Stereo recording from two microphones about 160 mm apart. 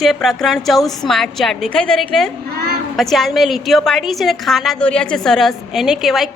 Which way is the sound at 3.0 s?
Centre (ahead or behind).